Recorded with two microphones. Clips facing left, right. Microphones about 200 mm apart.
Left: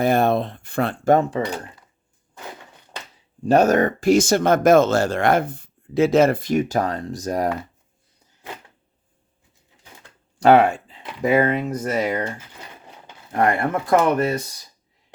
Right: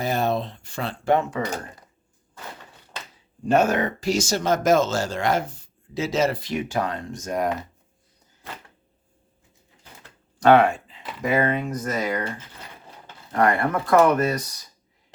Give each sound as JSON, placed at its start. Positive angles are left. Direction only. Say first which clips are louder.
{"t": 0.0, "sound": "speech", "louder": "left 6 dB", "side_deg": 55}
{"t": 3.4, "sound": "speech", "louder": "left 4 dB", "side_deg": 40}
{"t": 10.4, "sound": "speech", "louder": "left 2 dB", "side_deg": 30}
{"t": 13.3, "sound": "speech", "louder": "left 1 dB", "side_deg": 25}